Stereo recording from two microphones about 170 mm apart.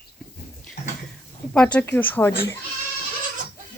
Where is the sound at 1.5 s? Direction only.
5° left (ahead or behind).